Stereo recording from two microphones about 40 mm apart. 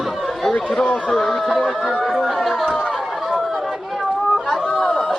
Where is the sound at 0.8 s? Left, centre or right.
Left.